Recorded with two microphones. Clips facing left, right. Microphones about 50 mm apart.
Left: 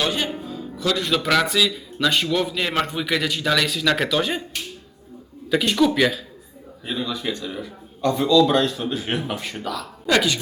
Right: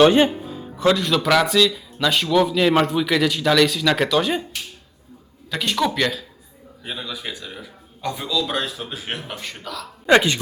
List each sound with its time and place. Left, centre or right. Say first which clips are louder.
0.0 s speech: right 10 dB; right
0.4 s music: right 5 dB; right
0.9 s speech: right 2 dB; centre
5.5 s speech: left 3 dB; centre
10.1 s speech: right 4 dB; right